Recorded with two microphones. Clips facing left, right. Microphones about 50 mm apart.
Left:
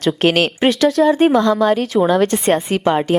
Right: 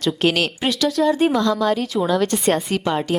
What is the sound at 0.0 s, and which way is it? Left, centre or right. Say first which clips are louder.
Speech: left 4 dB; left.